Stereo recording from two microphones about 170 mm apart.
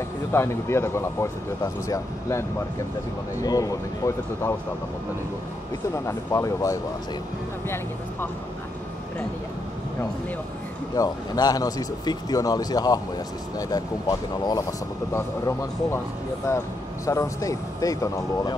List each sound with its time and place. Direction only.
0.3 s speech: 15° left (ahead or behind)
6.0 s speech: 20° left (ahead or behind)
11.0 s speech: 20° left (ahead or behind)